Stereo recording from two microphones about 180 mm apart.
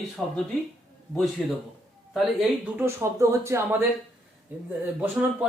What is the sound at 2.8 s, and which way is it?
Speech, 15° right (ahead or behind).